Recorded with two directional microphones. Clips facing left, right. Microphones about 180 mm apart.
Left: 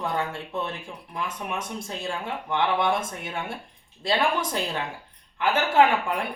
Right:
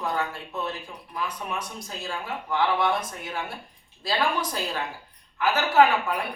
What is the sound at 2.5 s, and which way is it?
A man's voice, 25° left (ahead or behind).